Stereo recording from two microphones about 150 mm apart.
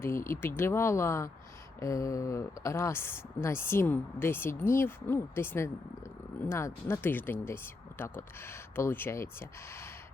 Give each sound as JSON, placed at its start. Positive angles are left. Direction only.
{"t": 0.0, "sound": "speech", "side_deg": 15}